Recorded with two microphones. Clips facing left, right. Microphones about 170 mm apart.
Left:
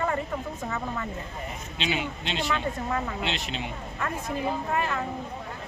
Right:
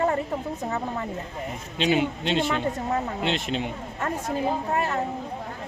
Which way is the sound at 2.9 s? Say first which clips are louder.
Right 3 dB; 35° right (ahead or behind).